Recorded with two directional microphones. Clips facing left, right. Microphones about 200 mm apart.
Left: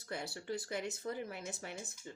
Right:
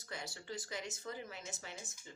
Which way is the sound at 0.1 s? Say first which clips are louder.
Left 5 dB; 60° left (ahead or behind).